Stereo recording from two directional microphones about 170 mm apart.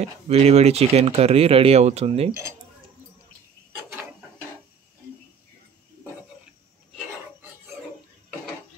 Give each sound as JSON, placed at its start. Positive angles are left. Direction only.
{"t": 0.3, "sound": "speech", "side_deg": -40}